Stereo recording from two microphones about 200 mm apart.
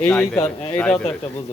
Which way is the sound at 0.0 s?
5° left (ahead or behind).